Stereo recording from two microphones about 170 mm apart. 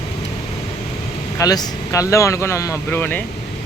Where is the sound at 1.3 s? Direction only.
20° left (ahead or behind).